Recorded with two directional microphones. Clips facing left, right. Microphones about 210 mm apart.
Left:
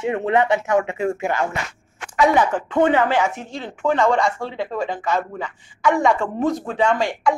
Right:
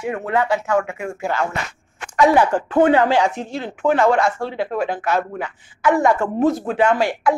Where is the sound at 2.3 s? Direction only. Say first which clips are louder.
Right 3 dB; 10° right (ahead or behind).